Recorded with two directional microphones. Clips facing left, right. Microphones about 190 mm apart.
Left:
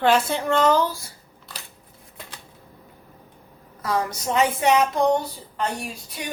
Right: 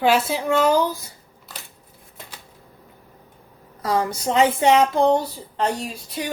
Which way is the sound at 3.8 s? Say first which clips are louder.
Right 3 dB; 25° right (ahead or behind).